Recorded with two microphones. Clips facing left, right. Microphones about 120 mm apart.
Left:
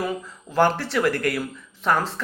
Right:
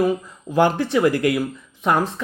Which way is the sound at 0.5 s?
20° right (ahead or behind).